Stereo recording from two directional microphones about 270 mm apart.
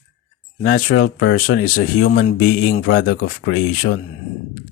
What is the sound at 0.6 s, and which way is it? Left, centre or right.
Speech, left.